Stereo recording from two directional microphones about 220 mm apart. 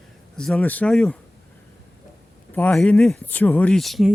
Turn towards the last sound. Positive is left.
turn(degrees=0)  # may be behind; listen again after turning